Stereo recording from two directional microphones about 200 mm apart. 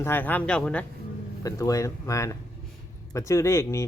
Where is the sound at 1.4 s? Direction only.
15° left (ahead or behind).